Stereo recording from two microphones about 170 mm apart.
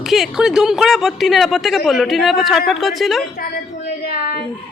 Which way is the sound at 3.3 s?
65° left (ahead or behind).